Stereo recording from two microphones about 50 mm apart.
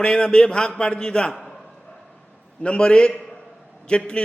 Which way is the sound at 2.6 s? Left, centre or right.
Left.